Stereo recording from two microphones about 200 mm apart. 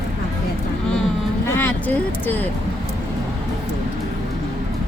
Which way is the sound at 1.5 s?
10° left (ahead or behind).